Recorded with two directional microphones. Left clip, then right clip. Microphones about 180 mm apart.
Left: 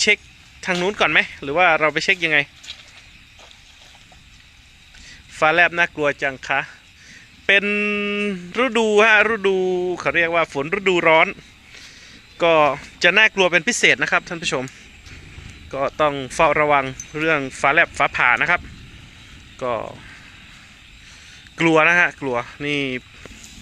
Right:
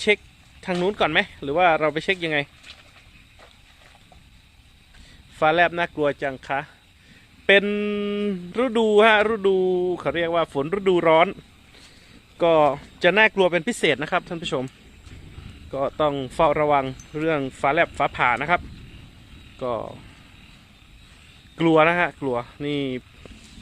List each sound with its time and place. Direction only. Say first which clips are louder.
0.6 s speech: left 3 dB; 10° right (ahead or behind)
5.4 s speech: left 3 dB; 10° right (ahead or behind)
12.4 s speech: left 2 dB; 15° right (ahead or behind)
16.0 s speech: left 3 dB; 10° right (ahead or behind)
21.6 s speech: left 3 dB; 10° right (ahead or behind)